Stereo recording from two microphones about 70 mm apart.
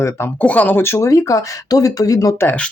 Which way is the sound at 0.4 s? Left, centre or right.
Left.